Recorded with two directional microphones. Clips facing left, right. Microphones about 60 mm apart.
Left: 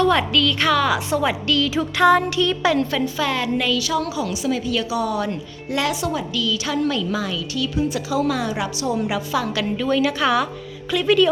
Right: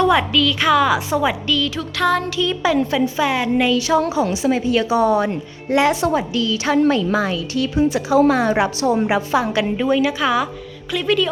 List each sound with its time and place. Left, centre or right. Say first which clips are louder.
0.0 s a woman's voice: right 2 dB; centre
2.4 s a woman's voice: right 1 dB; centre
3.7 s a woman's voice: right 5 dB; right
10.2 s a woman's voice: right 1 dB; centre